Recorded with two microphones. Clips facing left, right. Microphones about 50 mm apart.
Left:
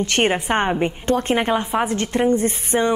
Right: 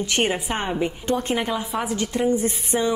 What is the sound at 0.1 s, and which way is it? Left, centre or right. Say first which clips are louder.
A woman's voice: left 4 dB; left.